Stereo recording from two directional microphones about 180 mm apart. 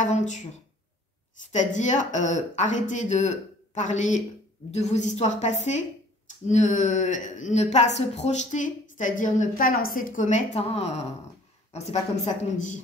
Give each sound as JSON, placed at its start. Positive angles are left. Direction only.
{"t": 0.0, "sound": "speech", "side_deg": 40}
{"t": 1.5, "sound": "a woman's voice", "side_deg": 40}